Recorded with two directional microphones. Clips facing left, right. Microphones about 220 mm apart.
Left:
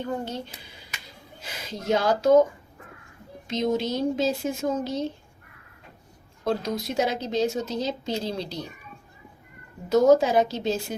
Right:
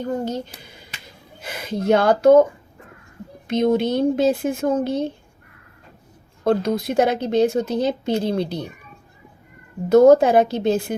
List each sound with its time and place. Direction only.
0.3 s speech: 40° right (ahead or behind)
1.4 s a woman's voice: 55° right (ahead or behind)
3.4 s a woman's voice: 60° right (ahead or behind)
6.4 s a woman's voice: 55° right (ahead or behind)
9.9 s a woman's voice: 55° right (ahead or behind)